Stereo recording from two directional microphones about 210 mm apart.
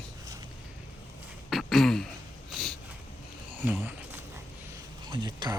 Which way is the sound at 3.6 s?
10° right (ahead or behind).